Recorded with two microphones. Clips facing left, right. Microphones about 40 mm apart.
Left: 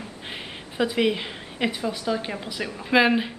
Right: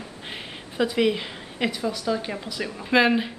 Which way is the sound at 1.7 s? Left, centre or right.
Left.